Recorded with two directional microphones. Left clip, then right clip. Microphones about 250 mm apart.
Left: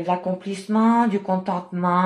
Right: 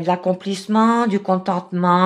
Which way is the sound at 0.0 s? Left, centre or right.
Right.